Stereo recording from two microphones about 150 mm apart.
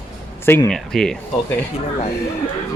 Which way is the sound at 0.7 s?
5° left (ahead or behind).